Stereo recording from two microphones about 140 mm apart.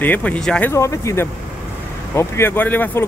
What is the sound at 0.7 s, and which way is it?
Speech, 20° left (ahead or behind).